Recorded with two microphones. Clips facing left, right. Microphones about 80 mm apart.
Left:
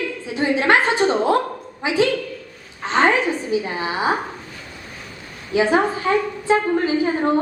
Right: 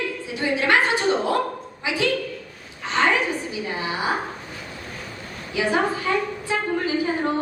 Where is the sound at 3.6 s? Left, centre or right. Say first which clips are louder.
Left 4 dB; left.